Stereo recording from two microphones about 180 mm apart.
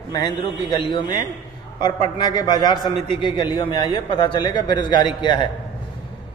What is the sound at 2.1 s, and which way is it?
A man's voice, 25° left (ahead or behind).